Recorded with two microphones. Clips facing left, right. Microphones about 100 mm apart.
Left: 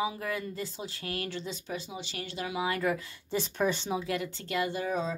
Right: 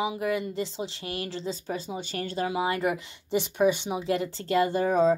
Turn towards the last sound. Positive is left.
turn(degrees=-45)  # may be behind; listen again after turning